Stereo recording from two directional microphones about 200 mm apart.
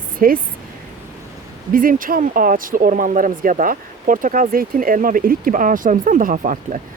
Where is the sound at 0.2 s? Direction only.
45° right (ahead or behind).